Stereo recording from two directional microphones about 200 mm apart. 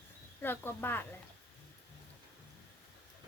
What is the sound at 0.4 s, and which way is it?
Speech, 10° left (ahead or behind).